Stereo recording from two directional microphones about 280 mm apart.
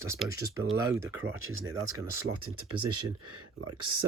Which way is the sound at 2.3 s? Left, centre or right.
Right.